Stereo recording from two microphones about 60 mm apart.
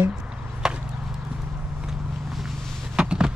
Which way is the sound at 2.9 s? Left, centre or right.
Centre.